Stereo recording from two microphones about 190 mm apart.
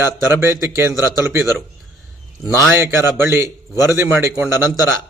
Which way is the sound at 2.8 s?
15° right (ahead or behind).